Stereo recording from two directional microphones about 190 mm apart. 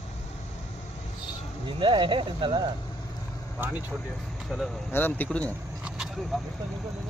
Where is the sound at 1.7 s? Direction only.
25° right (ahead or behind).